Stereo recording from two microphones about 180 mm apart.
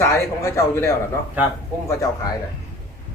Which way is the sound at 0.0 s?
15° left (ahead or behind).